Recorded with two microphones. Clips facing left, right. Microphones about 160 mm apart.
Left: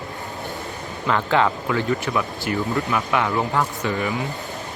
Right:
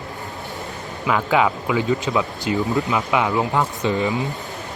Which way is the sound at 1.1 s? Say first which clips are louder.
Right 1 dB; 10° right (ahead or behind).